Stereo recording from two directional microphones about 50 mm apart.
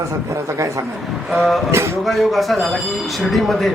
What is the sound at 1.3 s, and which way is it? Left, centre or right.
Speech, centre.